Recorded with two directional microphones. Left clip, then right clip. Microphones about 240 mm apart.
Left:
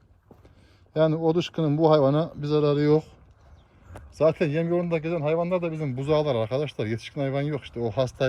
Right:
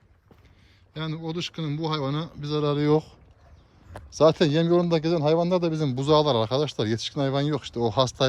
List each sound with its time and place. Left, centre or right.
0.9 s speech: centre
4.9 s speech: right
6.0 s speech: centre